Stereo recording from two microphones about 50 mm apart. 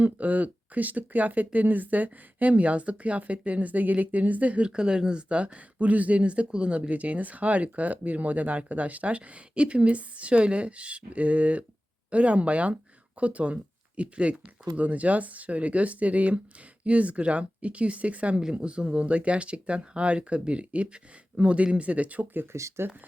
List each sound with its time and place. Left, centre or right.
0.0 s a woman's voice: right
22.8 s speech: right